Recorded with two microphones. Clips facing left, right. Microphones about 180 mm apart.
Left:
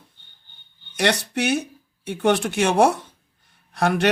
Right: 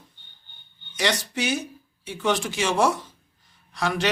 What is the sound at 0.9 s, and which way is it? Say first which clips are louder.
Speech: left 4 dB; 60° left (ahead or behind).